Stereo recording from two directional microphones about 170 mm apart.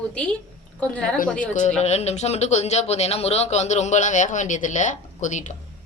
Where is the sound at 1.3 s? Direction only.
45° left (ahead or behind).